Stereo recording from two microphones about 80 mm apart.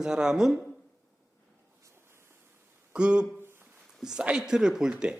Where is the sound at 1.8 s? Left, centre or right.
Right.